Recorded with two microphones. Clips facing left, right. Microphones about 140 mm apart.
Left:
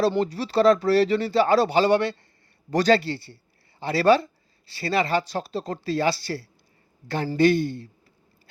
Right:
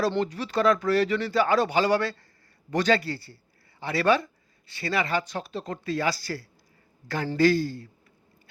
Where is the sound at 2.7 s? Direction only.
35° left (ahead or behind).